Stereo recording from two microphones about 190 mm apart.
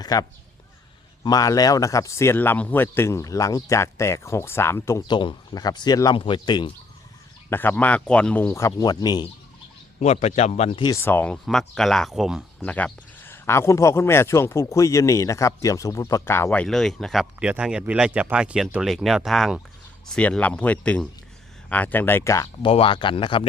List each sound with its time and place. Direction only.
0.0 s speech: 20° left (ahead or behind)
7.5 s speech: 10° left (ahead or behind)
10.0 s speech: 35° left (ahead or behind)
11.0 s speech: 10° left (ahead or behind)
22.6 s speech: 30° left (ahead or behind)